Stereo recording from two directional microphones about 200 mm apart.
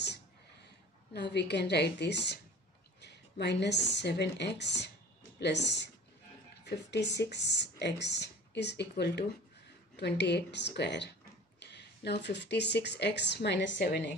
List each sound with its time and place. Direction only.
1.1 s a woman's voice: 60° left (ahead or behind)